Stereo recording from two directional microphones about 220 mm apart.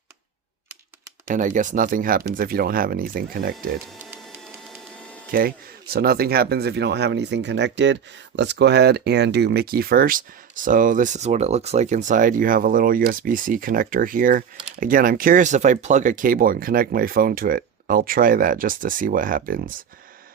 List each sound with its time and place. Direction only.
1.3 s speech: 35° right (ahead or behind)
5.3 s speech: 40° right (ahead or behind)